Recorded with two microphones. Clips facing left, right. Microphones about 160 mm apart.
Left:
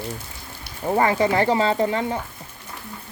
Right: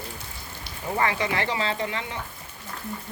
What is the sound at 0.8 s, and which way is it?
Speech, 35° left (ahead or behind).